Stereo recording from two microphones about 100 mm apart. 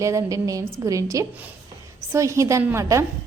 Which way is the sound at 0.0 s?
30° right (ahead or behind).